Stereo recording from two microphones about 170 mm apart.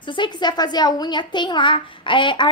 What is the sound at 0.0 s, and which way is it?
A woman's voice, 30° left (ahead or behind).